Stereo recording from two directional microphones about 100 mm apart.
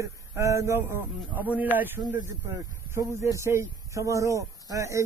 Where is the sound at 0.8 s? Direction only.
20° right (ahead or behind).